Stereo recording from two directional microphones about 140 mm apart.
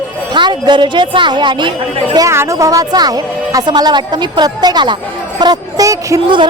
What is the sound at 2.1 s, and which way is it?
A woman's voice, 25° right (ahead or behind).